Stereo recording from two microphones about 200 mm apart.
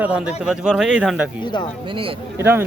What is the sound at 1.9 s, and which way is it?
Speech, 25° right (ahead or behind).